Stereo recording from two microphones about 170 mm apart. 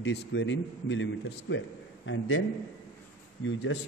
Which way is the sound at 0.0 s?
90° left.